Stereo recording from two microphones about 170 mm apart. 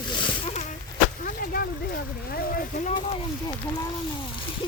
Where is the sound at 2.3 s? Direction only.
60° left (ahead or behind).